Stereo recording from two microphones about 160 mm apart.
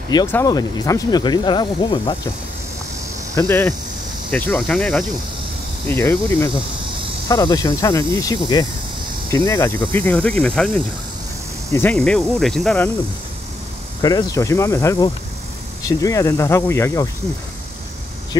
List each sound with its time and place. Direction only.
0.3 s speech: 20° left (ahead or behind)
3.3 s speech: 15° left (ahead or behind)
14.0 s speech: 25° left (ahead or behind)
18.3 s speech: 25° left (ahead or behind)